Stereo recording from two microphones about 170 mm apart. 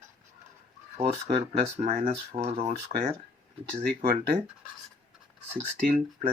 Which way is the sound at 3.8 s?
55° right (ahead or behind).